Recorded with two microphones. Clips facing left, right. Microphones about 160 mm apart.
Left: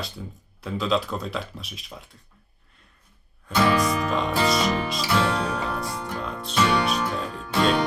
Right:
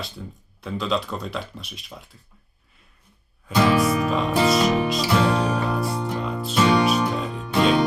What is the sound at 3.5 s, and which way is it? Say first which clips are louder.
Music: right 2 dB; 20° right (ahead or behind).